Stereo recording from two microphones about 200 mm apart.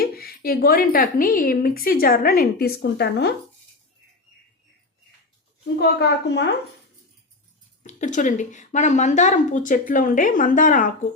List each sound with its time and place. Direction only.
0.0 s a woman's voice: 50° left (ahead or behind)
6.0 s a woman's voice: 60° left (ahead or behind)
7.9 s a woman's voice: 35° left (ahead or behind)